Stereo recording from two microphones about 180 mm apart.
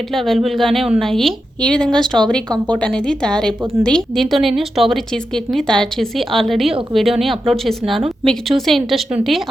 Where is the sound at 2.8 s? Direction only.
5° left (ahead or behind).